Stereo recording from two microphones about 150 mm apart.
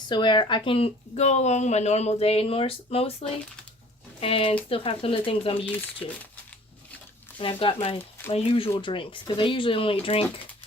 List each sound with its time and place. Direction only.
0.1 s speech: 30° left (ahead or behind)
7.3 s speech: 35° left (ahead or behind)